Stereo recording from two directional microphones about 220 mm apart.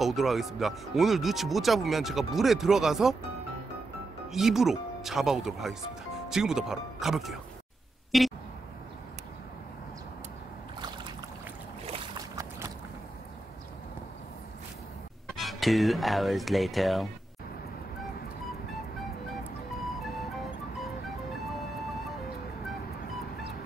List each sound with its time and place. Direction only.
0.0 s speech: centre (ahead or behind)
4.3 s speech: centre (ahead or behind)
12.4 s boat: 15° right (ahead or behind)
15.3 s speech: centre (ahead or behind)